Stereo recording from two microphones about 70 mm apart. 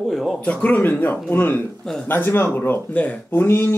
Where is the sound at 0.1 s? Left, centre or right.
Centre.